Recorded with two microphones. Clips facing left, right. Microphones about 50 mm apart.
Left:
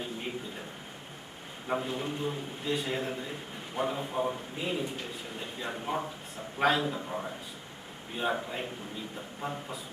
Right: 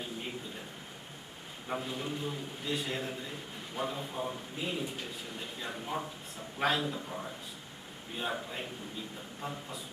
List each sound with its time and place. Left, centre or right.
1.6 s a man's voice: centre